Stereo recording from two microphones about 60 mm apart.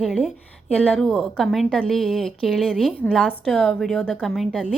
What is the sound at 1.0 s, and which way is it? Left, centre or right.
Speech, centre.